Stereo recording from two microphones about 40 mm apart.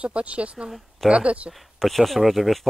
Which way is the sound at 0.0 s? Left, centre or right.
Right.